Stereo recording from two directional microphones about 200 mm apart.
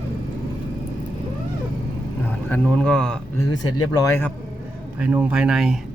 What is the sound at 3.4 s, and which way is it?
Speech, 20° left (ahead or behind).